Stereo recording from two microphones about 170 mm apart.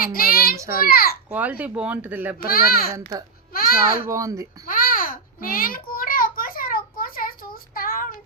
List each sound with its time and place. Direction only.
0.0 s child singing: 60° left (ahead or behind)
0.5 s a sound: 20° right (ahead or behind)
0.9 s a sound: 60° left (ahead or behind)
1.3 s speech: 10° right (ahead or behind)
2.5 s a child's voice: 60° left (ahead or behind)
2.9 s speech: 20° right (ahead or behind)
3.5 s a child's voice: 60° left (ahead or behind)
4.0 s speech: 20° right (ahead or behind)
4.6 s a sound: 55° left (ahead or behind)